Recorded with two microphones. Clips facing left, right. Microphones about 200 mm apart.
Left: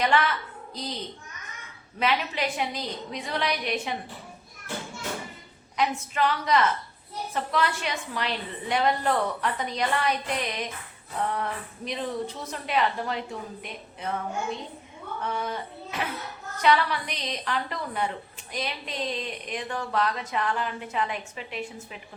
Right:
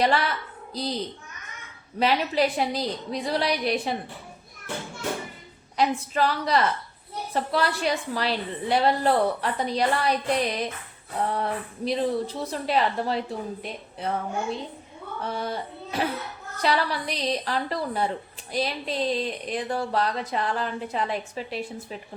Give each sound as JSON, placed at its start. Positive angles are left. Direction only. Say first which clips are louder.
{"t": 0.0, "sound": "a woman's voice", "louder": "right 1 dB", "side_deg": -35}
{"t": 2.0, "sound": "a woman's voice", "louder": "right 5 dB", "side_deg": -35}
{"t": 5.7, "sound": "a woman's voice", "louder": "right 3 dB", "side_deg": -35}
{"t": 15.2, "sound": "a woman's voice", "louder": "right 1 dB", "side_deg": -35}